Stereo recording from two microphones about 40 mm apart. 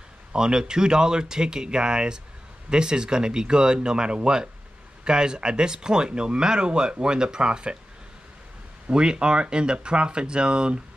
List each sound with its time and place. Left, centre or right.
0.3 s speech: centre
8.9 s speech: right